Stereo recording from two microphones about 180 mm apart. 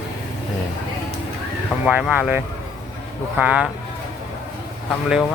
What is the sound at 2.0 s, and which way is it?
Speech, 5° right (ahead or behind).